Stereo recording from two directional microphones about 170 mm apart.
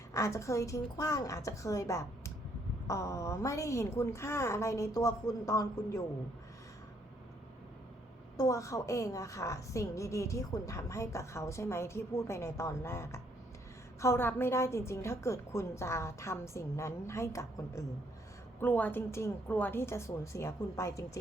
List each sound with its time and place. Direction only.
0.1 s a woman's voice: 15° left (ahead or behind)
8.4 s a woman's voice: 20° left (ahead or behind)